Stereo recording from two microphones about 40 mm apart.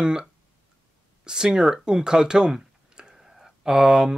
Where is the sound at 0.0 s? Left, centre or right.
Centre.